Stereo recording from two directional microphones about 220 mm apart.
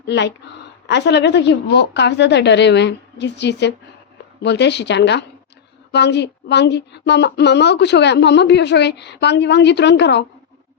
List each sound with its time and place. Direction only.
0.1 s a woman's voice: 50° left (ahead or behind)